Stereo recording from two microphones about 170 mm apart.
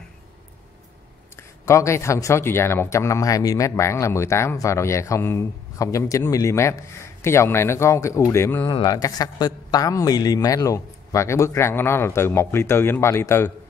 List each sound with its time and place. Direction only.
1.7 s speech: 15° left (ahead or behind)
8.6 s speech: 25° left (ahead or behind)